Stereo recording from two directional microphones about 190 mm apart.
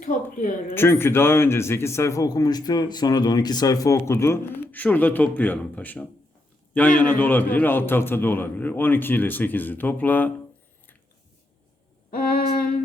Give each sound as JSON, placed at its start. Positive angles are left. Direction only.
{"t": 0.0, "sound": "speech", "side_deg": 45}
{"t": 0.7, "sound": "a man's voice", "side_deg": 10}
{"t": 12.1, "sound": "a sound", "side_deg": 50}